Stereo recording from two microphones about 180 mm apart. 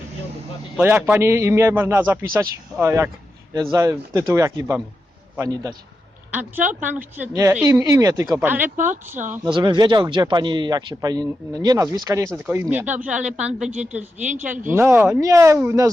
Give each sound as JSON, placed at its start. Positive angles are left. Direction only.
{"t": 0.8, "sound": "a woman's voice", "side_deg": -10}
{"t": 6.6, "sound": "speech", "side_deg": -45}
{"t": 6.8, "sound": "a woman's voice", "side_deg": -10}
{"t": 8.7, "sound": "speech", "side_deg": -45}
{"t": 9.4, "sound": "a man's voice", "side_deg": -25}
{"t": 13.1, "sound": "a woman's voice", "side_deg": -40}
{"t": 13.6, "sound": "a woman's voice", "side_deg": -5}